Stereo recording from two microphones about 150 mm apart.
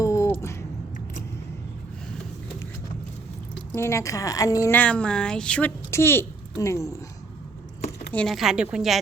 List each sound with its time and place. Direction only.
0.0 s a sound: 20° left (ahead or behind)
3.8 s a woman's voice: 20° left (ahead or behind)
4.8 s a woman's voice: 5° left (ahead or behind)
8.1 s speech: 5° left (ahead or behind)